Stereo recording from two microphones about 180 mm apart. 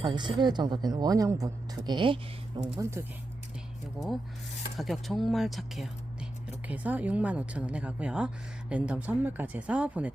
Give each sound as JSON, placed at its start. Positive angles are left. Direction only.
{"t": 0.0, "sound": "a woman's voice", "side_deg": -25}
{"t": 4.8, "sound": "a woman's voice", "side_deg": 0}